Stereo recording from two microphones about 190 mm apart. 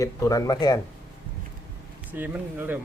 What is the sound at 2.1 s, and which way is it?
Speech, 10° right (ahead or behind).